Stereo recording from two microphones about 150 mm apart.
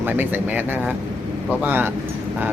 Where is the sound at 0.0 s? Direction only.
15° right (ahead or behind).